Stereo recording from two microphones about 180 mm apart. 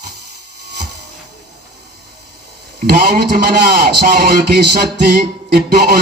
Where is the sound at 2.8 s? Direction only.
65° right (ahead or behind).